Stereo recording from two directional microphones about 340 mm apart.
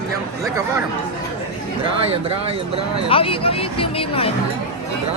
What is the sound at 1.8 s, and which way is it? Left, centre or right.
Speech, centre.